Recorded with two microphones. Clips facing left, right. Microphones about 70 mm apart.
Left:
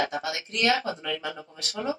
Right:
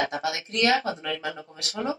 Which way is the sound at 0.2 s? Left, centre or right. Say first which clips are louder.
Right 2 dB; right.